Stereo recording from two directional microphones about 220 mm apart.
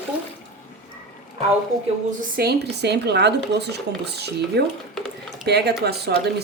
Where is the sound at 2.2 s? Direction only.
45° right (ahead or behind).